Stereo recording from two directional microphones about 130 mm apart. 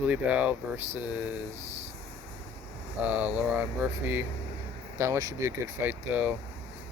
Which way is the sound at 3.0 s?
10° right (ahead or behind).